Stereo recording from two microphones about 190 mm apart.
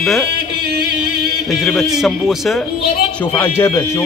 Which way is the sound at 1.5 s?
Centre (ahead or behind).